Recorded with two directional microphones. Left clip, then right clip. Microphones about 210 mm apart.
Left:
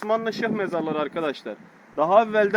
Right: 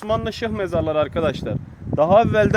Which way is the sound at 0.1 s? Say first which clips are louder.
Right 1 dB; 50° right (ahead or behind).